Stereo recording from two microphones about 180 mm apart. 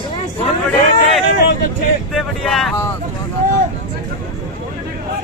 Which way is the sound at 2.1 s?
Centre (ahead or behind).